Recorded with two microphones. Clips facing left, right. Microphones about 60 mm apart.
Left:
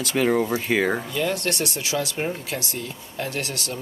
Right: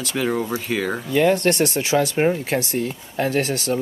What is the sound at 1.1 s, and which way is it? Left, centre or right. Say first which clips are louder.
Speech: right 8 dB; right.